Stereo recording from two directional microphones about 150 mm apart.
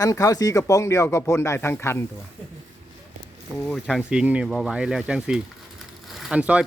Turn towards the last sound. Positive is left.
turn(degrees=-5)  # may be behind; listen again after turning